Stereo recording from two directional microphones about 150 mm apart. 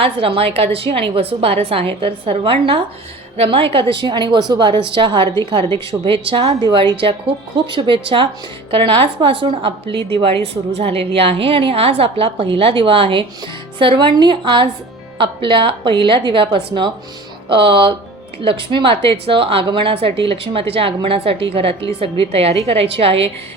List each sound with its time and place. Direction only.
0.0 s a woman's voice: 40° right (ahead or behind)
7.7 s a woman's voice: 35° right (ahead or behind)